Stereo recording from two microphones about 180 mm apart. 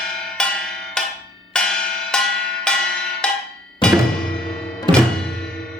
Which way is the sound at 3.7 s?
5° left (ahead or behind).